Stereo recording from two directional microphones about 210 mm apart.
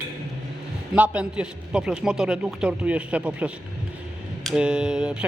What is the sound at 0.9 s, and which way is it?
A man's voice, 5° right (ahead or behind).